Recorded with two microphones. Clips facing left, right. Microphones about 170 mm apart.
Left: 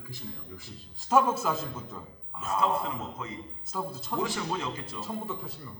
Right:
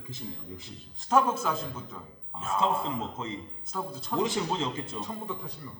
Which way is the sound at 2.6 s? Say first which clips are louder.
Right 1 dB; 25° right (ahead or behind).